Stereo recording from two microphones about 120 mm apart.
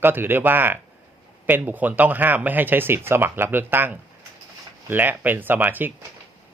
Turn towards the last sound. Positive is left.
turn(degrees=-15)  # may be behind; listen again after turning